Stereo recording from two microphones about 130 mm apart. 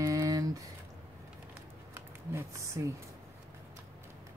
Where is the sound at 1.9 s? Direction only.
20° right (ahead or behind).